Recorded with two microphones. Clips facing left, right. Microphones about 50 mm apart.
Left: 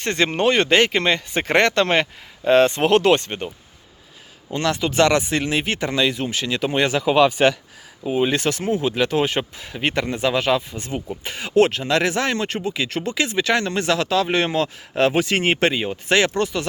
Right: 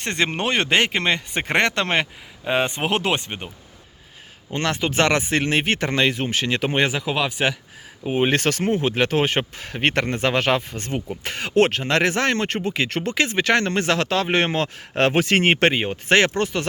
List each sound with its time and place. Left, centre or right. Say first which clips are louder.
0.0 s speech: left 4 dB; right
2.4 s speech: left 7 dB; centre
4.5 s speech: left 2 dB; right
7.0 s speech: left 7 dB; centre
8.0 s speech: even; right